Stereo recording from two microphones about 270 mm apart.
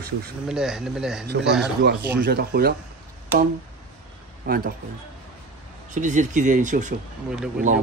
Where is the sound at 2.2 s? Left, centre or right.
Right.